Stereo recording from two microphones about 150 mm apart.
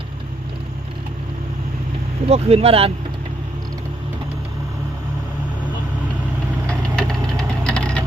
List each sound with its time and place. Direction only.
2.2 s speech: 40° right (ahead or behind)
6.7 s vehicle: 5° left (ahead or behind)